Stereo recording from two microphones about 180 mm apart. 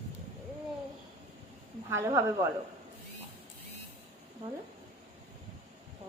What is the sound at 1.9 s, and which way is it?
Speech, 15° right (ahead or behind).